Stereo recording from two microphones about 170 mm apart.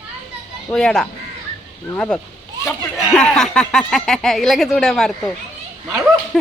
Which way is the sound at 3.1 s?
5° left (ahead or behind).